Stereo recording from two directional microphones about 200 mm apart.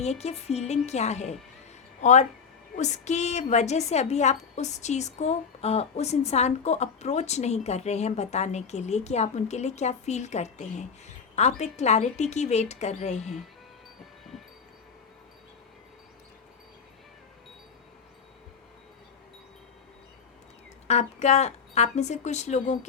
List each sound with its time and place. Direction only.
0.0 s a woman's voice: 35° left (ahead or behind)
20.8 s a woman's voice: 35° left (ahead or behind)